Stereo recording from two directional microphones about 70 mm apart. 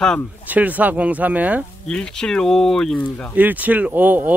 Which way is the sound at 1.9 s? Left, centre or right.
Centre.